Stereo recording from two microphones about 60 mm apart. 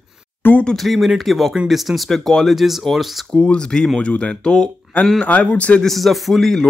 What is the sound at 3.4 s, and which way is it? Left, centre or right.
Speech, centre.